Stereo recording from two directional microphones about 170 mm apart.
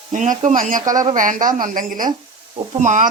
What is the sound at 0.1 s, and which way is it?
A woman's voice, 45° right (ahead or behind).